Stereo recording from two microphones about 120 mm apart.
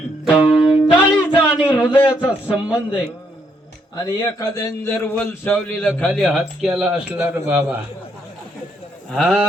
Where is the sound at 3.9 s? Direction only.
30° left (ahead or behind).